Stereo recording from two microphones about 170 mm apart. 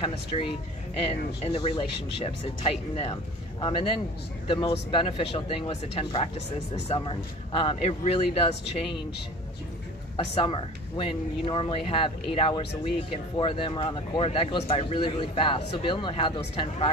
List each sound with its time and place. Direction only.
0.0 s speech: 35° left (ahead or behind)
10.3 s speech: 30° left (ahead or behind)